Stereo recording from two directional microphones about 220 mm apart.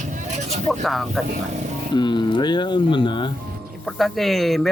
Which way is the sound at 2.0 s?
20° left (ahead or behind).